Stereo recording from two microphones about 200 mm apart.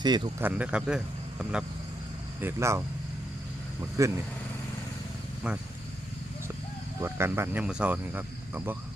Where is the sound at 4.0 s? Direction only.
15° right (ahead or behind).